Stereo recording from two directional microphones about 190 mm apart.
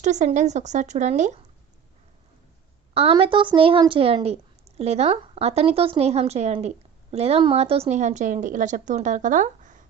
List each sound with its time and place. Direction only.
0.0 s a woman's voice: 40° right (ahead or behind)
2.9 s a woman's voice: 30° right (ahead or behind)